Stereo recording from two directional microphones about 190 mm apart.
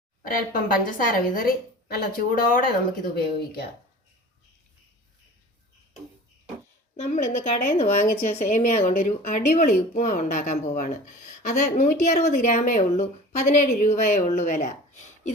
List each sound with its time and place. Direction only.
0.2 s a woman's voice: 45° left (ahead or behind)
6.9 s a woman's voice: 35° left (ahead or behind)